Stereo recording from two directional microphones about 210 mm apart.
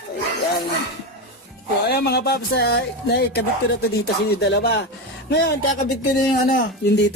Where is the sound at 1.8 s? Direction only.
50° left (ahead or behind).